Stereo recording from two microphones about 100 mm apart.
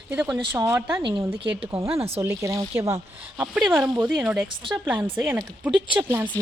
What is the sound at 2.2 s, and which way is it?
Speech, 30° right (ahead or behind).